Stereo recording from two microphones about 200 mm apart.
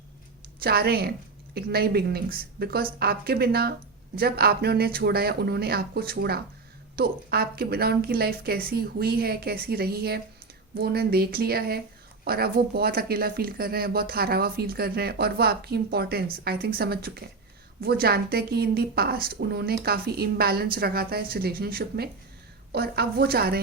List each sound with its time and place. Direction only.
0.6 s speech: 50° right (ahead or behind)